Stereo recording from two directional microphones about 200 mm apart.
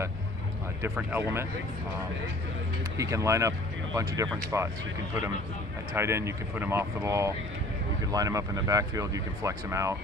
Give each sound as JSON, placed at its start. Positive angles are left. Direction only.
{"t": 0.9, "sound": "speech", "side_deg": -10}
{"t": 3.0, "sound": "speech", "side_deg": -15}
{"t": 5.9, "sound": "speech", "side_deg": -15}